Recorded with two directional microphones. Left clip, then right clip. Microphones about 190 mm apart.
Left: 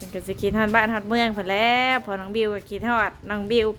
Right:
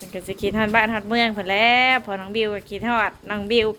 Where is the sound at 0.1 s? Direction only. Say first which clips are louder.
Even; 25° left (ahead or behind).